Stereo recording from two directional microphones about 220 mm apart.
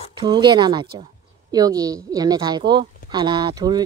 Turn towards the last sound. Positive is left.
turn(degrees=-20)  # may be behind; listen again after turning